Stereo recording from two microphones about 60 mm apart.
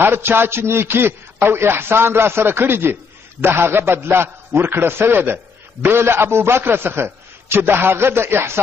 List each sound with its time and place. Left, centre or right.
0.0 s a man's voice: right